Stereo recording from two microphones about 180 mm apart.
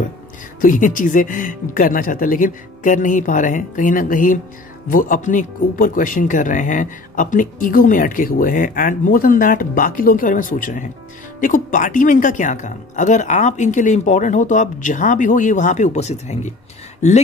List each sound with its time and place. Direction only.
0.6 s speech: 50° left (ahead or behind)